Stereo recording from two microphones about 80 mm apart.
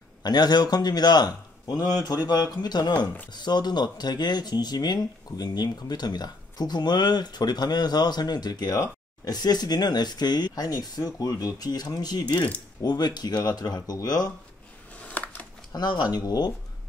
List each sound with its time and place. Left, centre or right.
0.2 s speech: left
15.0 s a sound: centre
15.7 s speech: left